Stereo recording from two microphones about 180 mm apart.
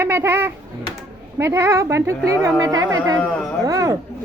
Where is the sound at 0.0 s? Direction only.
15° right (ahead or behind).